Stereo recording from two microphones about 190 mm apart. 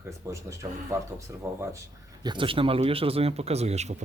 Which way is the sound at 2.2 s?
25° right (ahead or behind).